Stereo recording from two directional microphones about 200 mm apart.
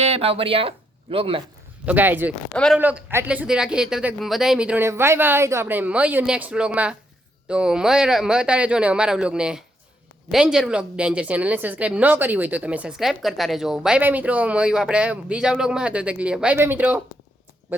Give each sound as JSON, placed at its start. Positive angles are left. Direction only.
{"t": 0.0, "sound": "speech", "side_deg": -30}
{"t": 1.8, "sound": "speech", "side_deg": -10}